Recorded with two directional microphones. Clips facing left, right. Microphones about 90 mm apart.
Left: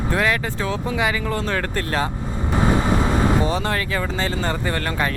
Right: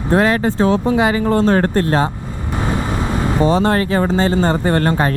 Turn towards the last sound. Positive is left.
turn(degrees=-35)  # may be behind; listen again after turning